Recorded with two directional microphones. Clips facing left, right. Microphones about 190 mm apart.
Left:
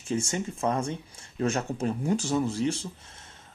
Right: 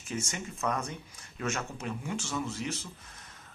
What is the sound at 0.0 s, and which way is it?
Speech, 30° left (ahead or behind).